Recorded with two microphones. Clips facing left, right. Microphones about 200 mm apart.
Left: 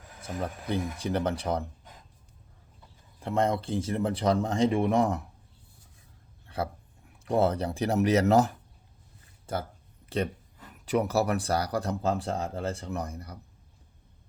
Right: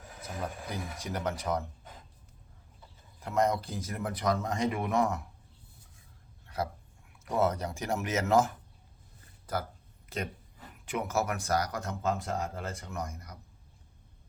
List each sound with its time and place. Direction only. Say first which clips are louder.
0.7 s speech: left 8 dB; 30° left (ahead or behind)
3.2 s a man's voice: left 2 dB; 30° left (ahead or behind)
7.3 s speech: left 4 dB; 30° left (ahead or behind)
9.5 s speech: left 2 dB; 25° left (ahead or behind)
10.8 s speech: left 6 dB; 35° left (ahead or behind)